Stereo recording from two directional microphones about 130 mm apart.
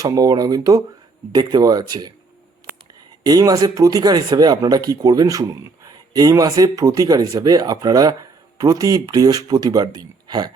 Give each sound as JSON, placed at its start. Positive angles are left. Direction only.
{"t": 0.0, "sound": "speech", "side_deg": -25}
{"t": 3.2, "sound": "speech", "side_deg": -30}